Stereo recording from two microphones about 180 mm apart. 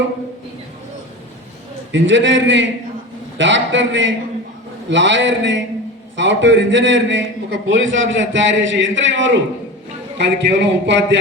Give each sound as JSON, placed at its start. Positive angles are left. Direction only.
{"t": 1.9, "sound": "a man's voice", "side_deg": -90}
{"t": 10.2, "sound": "a man's voice", "side_deg": -75}